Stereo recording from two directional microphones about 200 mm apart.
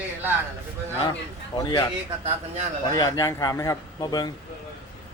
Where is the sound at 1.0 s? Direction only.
20° left (ahead or behind).